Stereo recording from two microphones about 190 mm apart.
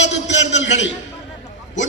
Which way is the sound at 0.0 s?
70° left (ahead or behind).